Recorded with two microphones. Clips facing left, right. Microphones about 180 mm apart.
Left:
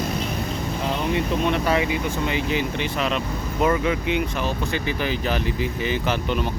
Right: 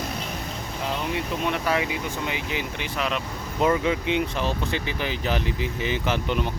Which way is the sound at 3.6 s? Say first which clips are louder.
Even; 20° right (ahead or behind).